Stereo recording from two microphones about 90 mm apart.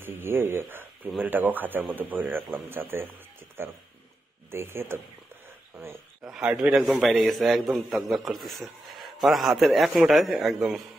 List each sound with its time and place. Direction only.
0.0 s speech: 25° right (ahead or behind)
6.2 s a man's voice: 5° right (ahead or behind)